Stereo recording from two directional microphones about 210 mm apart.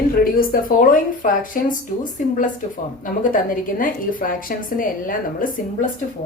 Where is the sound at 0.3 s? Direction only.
40° left (ahead or behind).